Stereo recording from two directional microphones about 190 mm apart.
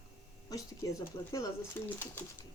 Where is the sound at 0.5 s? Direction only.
15° left (ahead or behind).